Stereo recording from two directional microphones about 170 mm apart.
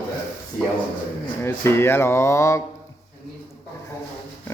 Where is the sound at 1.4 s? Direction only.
15° left (ahead or behind).